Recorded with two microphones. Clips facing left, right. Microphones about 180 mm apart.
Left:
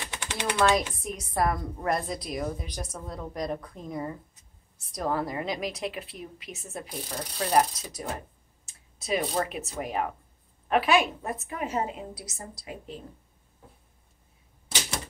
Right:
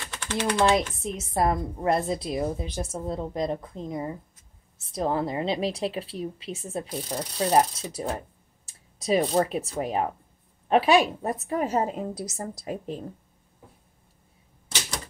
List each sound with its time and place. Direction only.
0.0 s typewriter: 15° left (ahead or behind)
0.6 s a woman's voice: 20° right (ahead or behind); by 12.9 s 45° right (ahead or behind)